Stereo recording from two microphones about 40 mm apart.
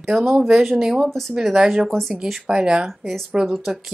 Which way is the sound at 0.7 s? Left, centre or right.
Centre.